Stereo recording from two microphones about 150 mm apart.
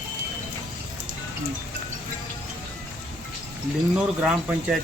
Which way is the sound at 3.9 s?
5° right (ahead or behind).